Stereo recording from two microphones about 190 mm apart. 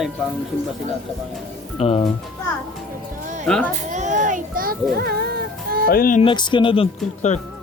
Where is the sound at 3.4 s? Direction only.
5° left (ahead or behind).